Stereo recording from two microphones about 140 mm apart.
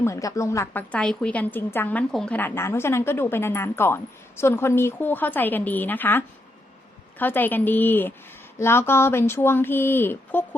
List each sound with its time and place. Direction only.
0.0 s a woman's voice: 20° left (ahead or behind)